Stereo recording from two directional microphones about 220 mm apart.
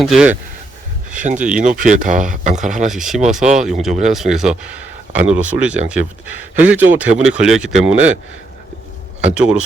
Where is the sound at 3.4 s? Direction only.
35° right (ahead or behind).